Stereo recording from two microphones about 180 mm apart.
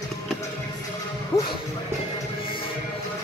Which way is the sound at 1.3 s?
30° left (ahead or behind).